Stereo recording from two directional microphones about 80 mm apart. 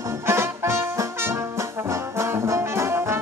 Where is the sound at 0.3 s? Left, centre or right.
Right.